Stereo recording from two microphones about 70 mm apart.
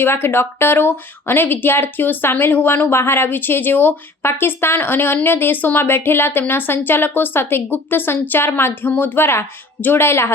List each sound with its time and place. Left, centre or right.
0.0 s speech: left